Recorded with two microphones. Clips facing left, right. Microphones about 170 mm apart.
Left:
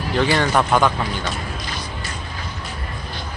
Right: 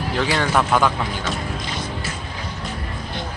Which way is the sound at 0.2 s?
5° right (ahead or behind).